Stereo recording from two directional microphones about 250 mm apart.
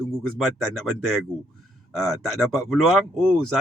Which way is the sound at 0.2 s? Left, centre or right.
Centre.